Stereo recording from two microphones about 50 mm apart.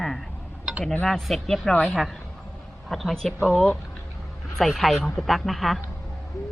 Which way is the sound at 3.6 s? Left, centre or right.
Centre.